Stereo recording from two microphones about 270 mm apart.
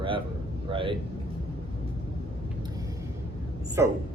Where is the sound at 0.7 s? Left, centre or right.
Centre.